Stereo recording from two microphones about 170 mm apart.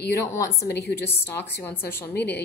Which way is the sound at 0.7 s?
80° left.